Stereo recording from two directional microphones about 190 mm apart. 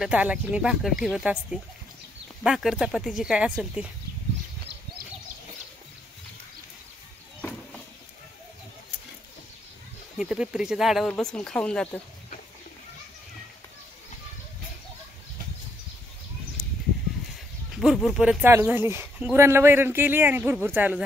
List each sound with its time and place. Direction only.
0.0 s speech: 5° right (ahead or behind)
10.1 s speech: 5° right (ahead or behind)
17.7 s speech: centre (ahead or behind)